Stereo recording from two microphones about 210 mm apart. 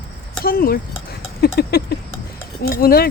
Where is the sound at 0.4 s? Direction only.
45° left (ahead or behind).